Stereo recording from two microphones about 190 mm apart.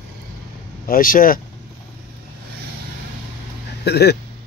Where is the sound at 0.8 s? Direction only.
50° left (ahead or behind).